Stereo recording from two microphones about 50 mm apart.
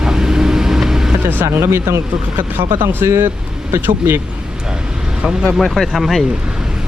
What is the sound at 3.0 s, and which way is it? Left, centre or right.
Speech, right.